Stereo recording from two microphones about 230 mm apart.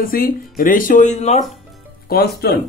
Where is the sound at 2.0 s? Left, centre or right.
Left.